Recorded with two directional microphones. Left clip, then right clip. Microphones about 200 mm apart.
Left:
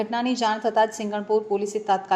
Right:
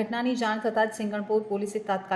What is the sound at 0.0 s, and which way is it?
A woman's voice, 20° left (ahead or behind).